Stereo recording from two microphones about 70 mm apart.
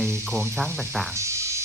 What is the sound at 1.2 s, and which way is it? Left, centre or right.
Frog, right.